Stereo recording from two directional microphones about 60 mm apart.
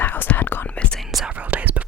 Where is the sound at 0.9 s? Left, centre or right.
Centre.